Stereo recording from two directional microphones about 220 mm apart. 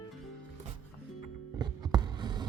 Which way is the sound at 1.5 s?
20° right (ahead or behind).